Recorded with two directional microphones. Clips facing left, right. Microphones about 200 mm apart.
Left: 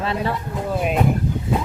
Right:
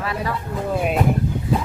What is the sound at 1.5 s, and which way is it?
Vehicle, 25° left (ahead or behind).